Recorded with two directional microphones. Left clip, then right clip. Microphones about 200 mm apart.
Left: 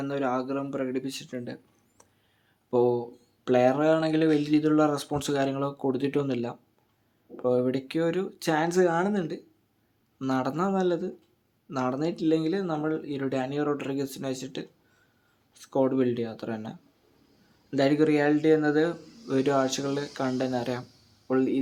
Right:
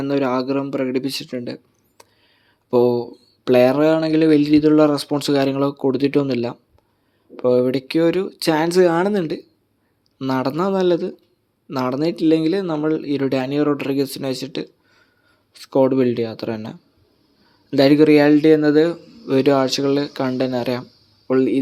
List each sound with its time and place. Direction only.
0.0 s speech: 35° right (ahead or behind)